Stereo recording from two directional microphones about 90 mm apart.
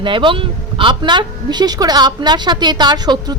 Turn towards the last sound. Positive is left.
turn(degrees=-50)  # may be behind; listen again after turning